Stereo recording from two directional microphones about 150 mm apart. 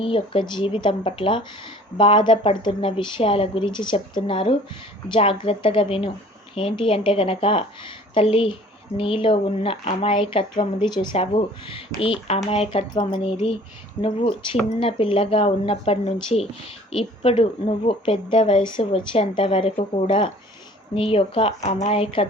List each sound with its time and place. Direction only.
0.0 s speech: 35° left (ahead or behind)